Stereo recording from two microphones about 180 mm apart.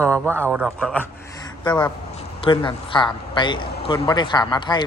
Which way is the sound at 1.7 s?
25° left (ahead or behind).